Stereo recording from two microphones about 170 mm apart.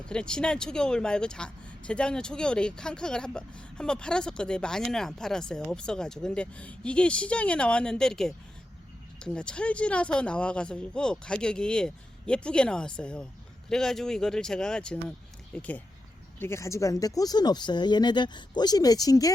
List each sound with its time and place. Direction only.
0.0 s speech: 5° left (ahead or behind); by 19.3 s 20° left (ahead or behind)